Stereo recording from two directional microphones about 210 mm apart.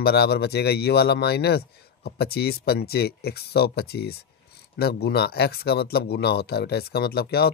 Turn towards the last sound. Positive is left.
turn(degrees=50)  # may be behind; listen again after turning